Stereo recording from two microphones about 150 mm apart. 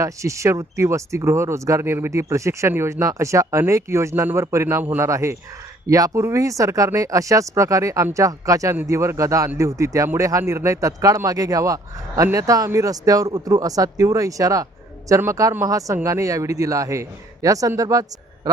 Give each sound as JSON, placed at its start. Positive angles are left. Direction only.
{"t": 0.0, "sound": "speech", "side_deg": -20}